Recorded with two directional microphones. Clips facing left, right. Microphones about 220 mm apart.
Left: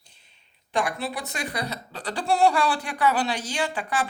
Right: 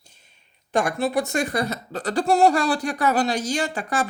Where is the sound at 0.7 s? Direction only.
45° right (ahead or behind).